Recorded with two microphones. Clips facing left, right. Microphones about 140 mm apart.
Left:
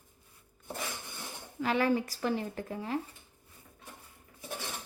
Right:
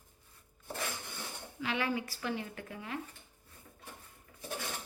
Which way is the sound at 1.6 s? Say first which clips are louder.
Left 6 dB; 40° left (ahead or behind).